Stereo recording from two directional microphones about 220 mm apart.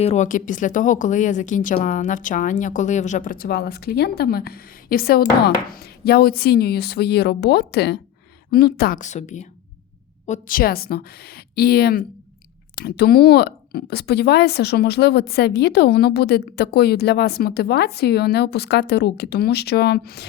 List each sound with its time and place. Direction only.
0.0 s a woman's voice: 30° left (ahead or behind); by 20.2 s 45° left (ahead or behind)